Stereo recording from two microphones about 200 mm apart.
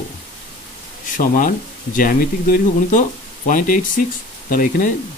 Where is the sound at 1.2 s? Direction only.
40° left (ahead or behind).